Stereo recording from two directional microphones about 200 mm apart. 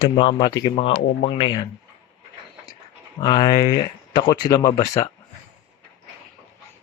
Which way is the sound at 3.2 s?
20° left (ahead or behind).